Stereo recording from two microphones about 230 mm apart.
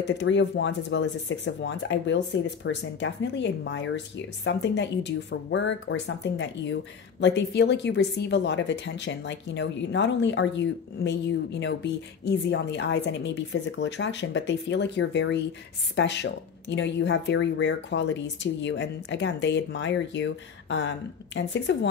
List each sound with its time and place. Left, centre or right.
0.0 s speech: left